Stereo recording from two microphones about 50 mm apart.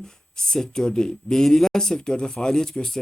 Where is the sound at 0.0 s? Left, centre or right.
Centre.